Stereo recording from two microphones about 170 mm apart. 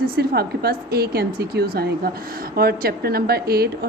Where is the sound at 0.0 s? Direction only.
65° right (ahead or behind).